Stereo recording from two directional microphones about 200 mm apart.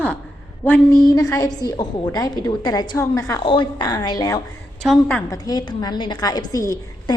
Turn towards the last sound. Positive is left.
turn(degrees=15)  # may be behind; listen again after turning